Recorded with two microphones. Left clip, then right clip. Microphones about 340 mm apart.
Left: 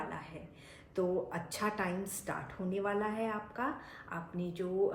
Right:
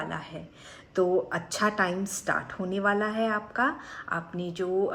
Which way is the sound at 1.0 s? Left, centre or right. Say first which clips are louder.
Right 9 dB; right.